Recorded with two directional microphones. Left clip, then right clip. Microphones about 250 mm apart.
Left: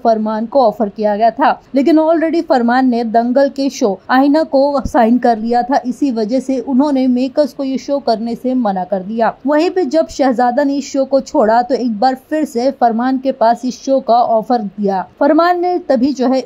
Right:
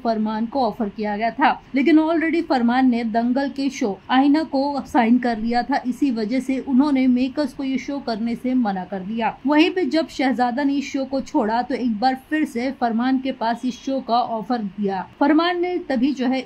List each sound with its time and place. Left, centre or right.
0.0 s a woman's voice: centre